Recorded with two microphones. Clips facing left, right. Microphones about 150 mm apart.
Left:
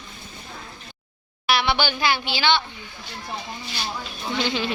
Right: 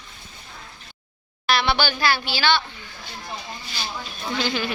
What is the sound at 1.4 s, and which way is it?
A woman's voice, 15° left (ahead or behind).